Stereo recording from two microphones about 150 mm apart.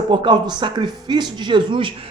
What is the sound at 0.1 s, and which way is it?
Speech, 30° right (ahead or behind).